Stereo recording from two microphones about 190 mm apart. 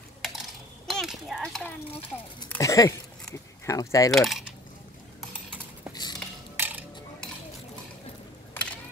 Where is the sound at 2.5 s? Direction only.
15° left (ahead or behind).